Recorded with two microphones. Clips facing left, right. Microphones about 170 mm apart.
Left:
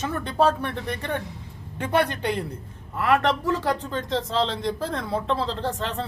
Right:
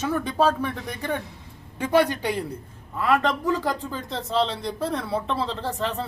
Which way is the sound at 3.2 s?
75° left (ahead or behind).